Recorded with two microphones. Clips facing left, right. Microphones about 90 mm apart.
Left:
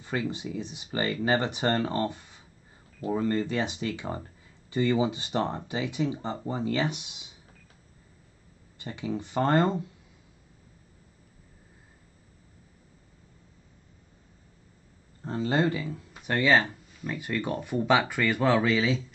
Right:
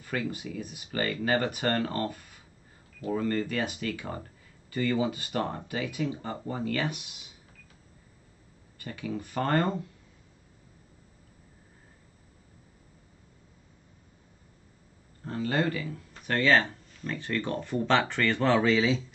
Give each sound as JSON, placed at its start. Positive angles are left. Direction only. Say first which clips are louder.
{"t": 0.0, "sound": "speech", "louder": "left 2 dB", "side_deg": 25}
{"t": 8.7, "sound": "speech", "louder": "left 2 dB", "side_deg": 20}
{"t": 15.2, "sound": "speech", "louder": "left 2 dB", "side_deg": 25}